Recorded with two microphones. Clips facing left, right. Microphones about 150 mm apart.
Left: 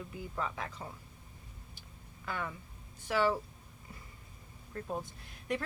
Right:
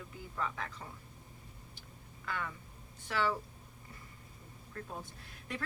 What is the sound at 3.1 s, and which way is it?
Speech, 15° left (ahead or behind).